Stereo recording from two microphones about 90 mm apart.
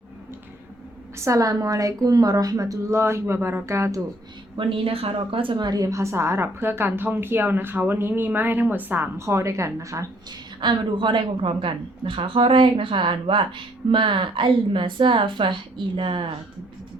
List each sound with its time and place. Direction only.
1.2 s a woman's voice: 40° right (ahead or behind)
4.5 s a woman's voice: 75° right (ahead or behind); by 10.1 s 35° right (ahead or behind)
10.6 s a woman's voice: 60° right (ahead or behind)